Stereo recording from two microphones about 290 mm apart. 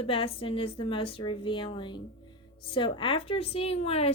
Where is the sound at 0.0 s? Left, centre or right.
Centre.